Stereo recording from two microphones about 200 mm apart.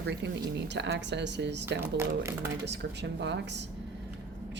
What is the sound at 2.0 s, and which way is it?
Speech, 10° right (ahead or behind).